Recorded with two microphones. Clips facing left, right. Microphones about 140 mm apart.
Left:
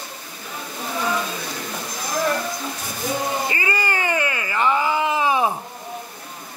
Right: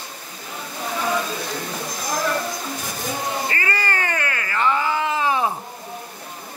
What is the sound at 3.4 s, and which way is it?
Cat, 15° left (ahead or behind).